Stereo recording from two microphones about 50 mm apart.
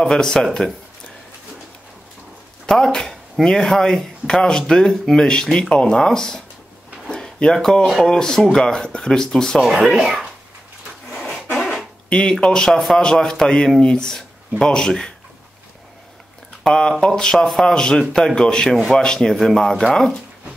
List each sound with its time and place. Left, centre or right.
0.0 s speech: centre
2.6 s a sound: centre
3.4 s speech: centre
7.1 s a sound: centre
7.5 s speech: centre
9.6 s speech: centre
11.1 s a sound: centre
12.1 s speech: centre
16.6 s speech: centre